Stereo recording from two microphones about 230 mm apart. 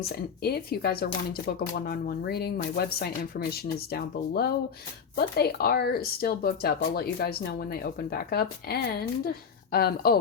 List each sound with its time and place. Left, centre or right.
0.1 s speech: left